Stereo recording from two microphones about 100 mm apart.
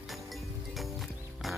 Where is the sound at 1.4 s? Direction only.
Centre (ahead or behind).